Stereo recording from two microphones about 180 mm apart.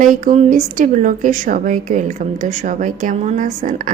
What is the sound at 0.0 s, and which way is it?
A woman's voice, 45° right (ahead or behind).